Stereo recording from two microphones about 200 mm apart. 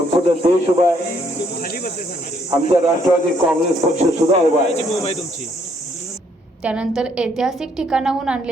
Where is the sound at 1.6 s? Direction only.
45° left (ahead or behind).